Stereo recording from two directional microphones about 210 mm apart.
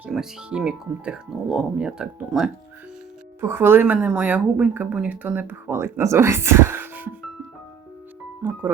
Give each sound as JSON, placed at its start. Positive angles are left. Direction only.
{"t": 0.0, "sound": "a woman's voice", "side_deg": -5}